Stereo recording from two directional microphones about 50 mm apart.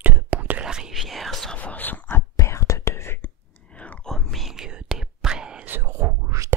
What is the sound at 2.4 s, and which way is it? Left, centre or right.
Whispering, left.